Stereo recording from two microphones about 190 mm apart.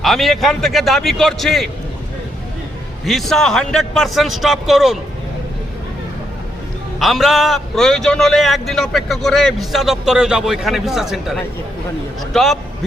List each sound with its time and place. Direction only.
0.0 s a man's voice: centre (ahead or behind)
3.1 s a man's voice: centre (ahead or behind)
7.0 s a man's voice: centre (ahead or behind)